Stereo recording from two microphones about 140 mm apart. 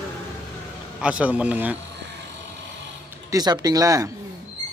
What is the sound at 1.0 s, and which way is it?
Speech, 10° right (ahead or behind).